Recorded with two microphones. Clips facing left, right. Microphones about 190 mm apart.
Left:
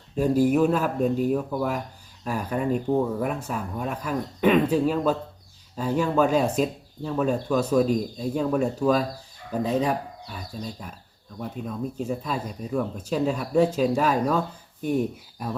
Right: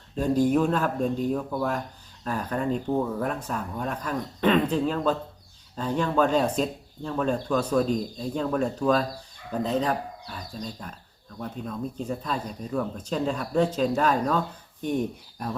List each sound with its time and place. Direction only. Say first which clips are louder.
0.2 s speech: left 2 dB; 10° left (ahead or behind)